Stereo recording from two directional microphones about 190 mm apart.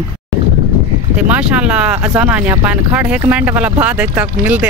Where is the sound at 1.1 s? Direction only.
5° right (ahead or behind).